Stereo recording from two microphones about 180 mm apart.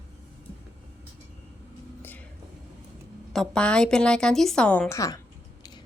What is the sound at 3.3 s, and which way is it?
A woman's voice, 5° left (ahead or behind).